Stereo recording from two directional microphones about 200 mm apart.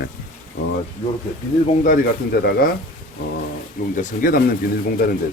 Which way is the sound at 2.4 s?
50° left (ahead or behind).